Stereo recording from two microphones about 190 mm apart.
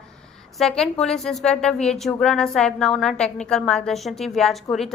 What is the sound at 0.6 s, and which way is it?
Speech, centre (ahead or behind).